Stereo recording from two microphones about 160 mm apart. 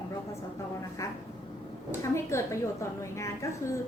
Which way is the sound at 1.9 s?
15° left (ahead or behind).